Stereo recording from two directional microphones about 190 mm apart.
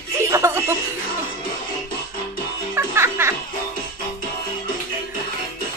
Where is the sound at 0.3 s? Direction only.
15° right (ahead or behind).